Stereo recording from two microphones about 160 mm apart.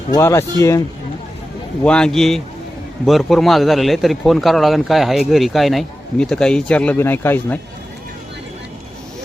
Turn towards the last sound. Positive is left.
turn(degrees=10)  # may be behind; listen again after turning